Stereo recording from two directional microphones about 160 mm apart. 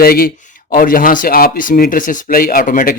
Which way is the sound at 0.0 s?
70° left (ahead or behind).